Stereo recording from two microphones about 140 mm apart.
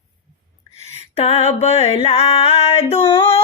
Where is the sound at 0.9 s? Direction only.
50° left (ahead or behind).